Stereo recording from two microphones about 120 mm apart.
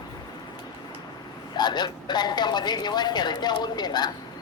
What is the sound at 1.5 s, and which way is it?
A woman's voice, 35° left (ahead or behind).